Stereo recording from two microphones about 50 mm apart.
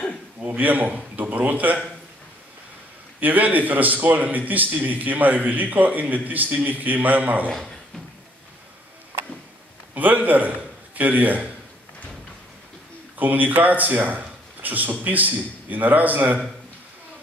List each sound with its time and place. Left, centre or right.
0.4 s a man's voice: right
3.2 s a man's voice: right
9.9 s a man's voice: right
13.2 s a man's voice: right